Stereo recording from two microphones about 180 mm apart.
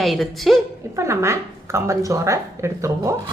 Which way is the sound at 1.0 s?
15° right (ahead or behind).